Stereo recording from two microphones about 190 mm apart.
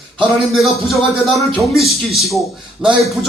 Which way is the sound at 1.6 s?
Centre (ahead or behind).